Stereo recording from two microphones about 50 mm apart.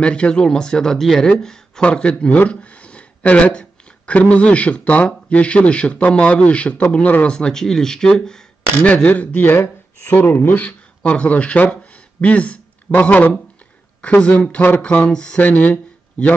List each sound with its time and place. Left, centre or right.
0.0 s speech: left
7.5 s speech: centre
8.8 s speech: left
9.1 s a man's voice: left
9.5 s speech: left
11.7 s a sound: left
14.0 s a man's voice: left
15.0 s speech: centre
15.4 s speech: left